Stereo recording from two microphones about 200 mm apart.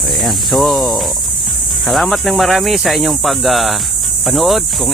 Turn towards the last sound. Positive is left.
turn(degrees=0)  # may be behind; listen again after turning